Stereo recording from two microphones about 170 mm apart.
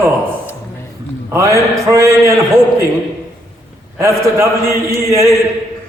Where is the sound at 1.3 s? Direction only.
15° right (ahead or behind).